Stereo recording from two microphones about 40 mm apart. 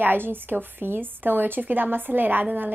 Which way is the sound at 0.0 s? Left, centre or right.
Right.